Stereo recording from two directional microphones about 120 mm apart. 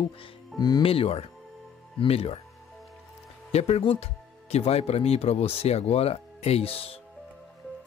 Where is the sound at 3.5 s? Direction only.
60° left (ahead or behind).